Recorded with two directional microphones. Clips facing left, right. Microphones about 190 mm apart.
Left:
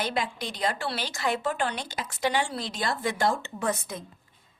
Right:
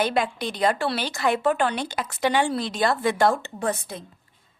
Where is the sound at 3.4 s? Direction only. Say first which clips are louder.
Right 2 dB; 35° right (ahead or behind).